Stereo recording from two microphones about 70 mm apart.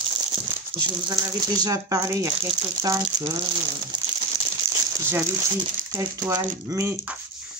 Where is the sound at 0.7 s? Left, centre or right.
Right.